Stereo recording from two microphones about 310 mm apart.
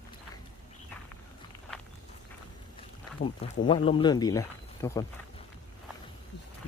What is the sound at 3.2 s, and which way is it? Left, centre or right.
Speech, centre.